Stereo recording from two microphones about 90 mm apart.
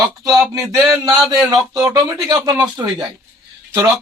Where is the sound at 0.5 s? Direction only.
35° right (ahead or behind).